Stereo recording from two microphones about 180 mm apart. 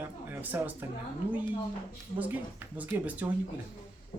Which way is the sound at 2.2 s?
10° right (ahead or behind).